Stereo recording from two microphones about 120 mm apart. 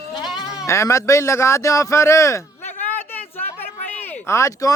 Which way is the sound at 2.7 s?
85° left.